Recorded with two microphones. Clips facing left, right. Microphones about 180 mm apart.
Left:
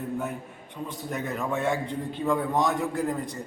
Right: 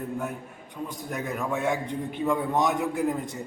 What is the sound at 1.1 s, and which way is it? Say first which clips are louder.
A man's voice: even; centre (ahead or behind).